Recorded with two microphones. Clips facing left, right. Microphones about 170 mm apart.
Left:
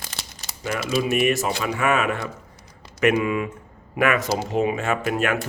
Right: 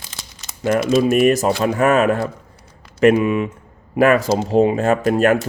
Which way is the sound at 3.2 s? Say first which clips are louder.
Right 5 dB; 25° right (ahead or behind).